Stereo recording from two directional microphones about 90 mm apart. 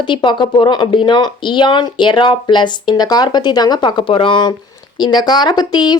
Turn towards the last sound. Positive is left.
turn(degrees=50)  # may be behind; listen again after turning